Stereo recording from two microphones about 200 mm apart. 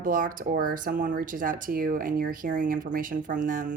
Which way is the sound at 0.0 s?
45° right (ahead or behind).